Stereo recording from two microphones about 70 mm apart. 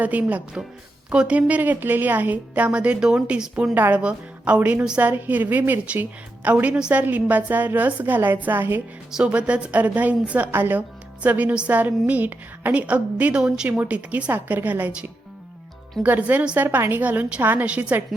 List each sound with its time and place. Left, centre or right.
0.0 s a woman's voice: right
3.5 s a woman's voice: right
9.1 s a woman's voice: centre
16.0 s a woman's voice: right
16.6 s a woman's voice: right